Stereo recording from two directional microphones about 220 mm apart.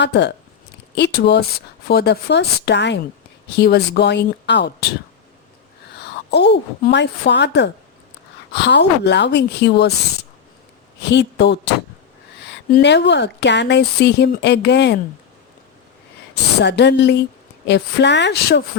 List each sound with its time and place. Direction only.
0.0 s speech: 50° left (ahead or behind)
6.3 s speech: 50° left (ahead or behind)
11.1 s speech: 50° left (ahead or behind)
12.7 s speech: 50° left (ahead or behind)
16.3 s speech: 50° left (ahead or behind)